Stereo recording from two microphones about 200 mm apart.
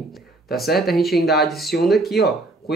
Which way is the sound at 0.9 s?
Centre (ahead or behind).